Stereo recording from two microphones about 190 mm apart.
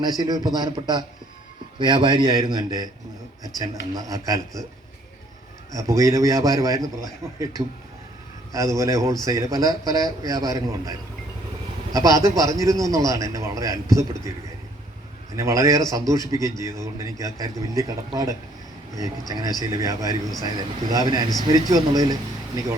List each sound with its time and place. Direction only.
0.0 s a man's voice: 20° right (ahead or behind)
5.7 s a man's voice: 20° right (ahead or behind)
15.4 s a man's voice: 15° right (ahead or behind)